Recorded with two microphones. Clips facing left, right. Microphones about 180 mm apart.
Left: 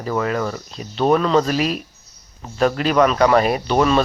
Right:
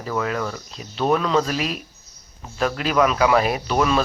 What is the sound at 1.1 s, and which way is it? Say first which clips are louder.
Speech: left 4 dB; centre (ahead or behind).